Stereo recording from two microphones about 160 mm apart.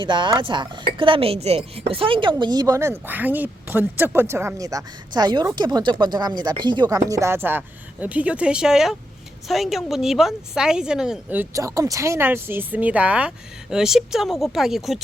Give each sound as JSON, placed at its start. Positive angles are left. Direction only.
{"t": 0.0, "sound": "speech", "side_deg": -30}